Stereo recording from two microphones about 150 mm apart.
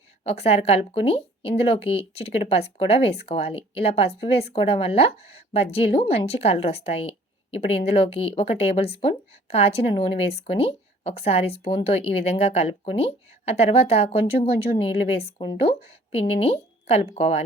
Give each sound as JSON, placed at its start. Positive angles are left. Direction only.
{"t": 0.3, "sound": "a woman's voice", "side_deg": 45}